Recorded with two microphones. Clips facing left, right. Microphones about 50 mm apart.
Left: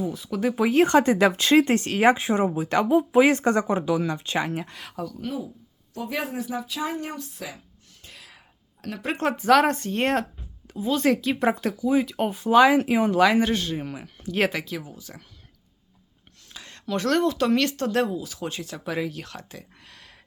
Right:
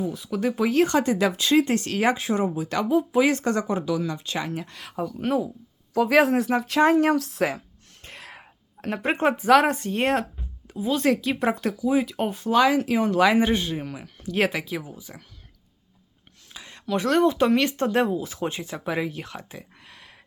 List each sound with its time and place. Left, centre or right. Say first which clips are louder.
0.0 s speech: even; centre
0.8 s speech: left 4 dB; left
4.7 s speech: left 1 dB; centre
5.2 s speech: right 9 dB; right
6.1 s speech: right 10 dB; right
8.0 s whispering: right 5 dB; right
9.1 s speech: right 1 dB; centre
12.5 s speech: left 3 dB; centre
13.1 s speech: right 2 dB; centre
13.8 s speech: even; centre
14.6 s speech: right 2 dB; centre
16.5 s a sound: right 2 dB; centre
17.2 s speech: right 2 dB; right